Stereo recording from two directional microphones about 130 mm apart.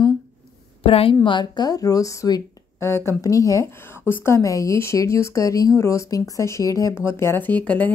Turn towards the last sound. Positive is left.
turn(degrees=15)  # may be behind; listen again after turning